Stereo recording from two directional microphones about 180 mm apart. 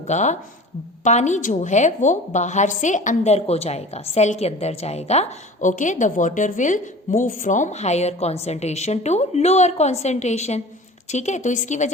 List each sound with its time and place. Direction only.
0.1 s a woman's voice: 40° left (ahead or behind)